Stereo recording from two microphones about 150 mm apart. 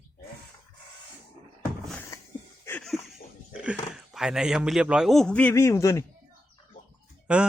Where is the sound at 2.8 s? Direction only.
Centre (ahead or behind).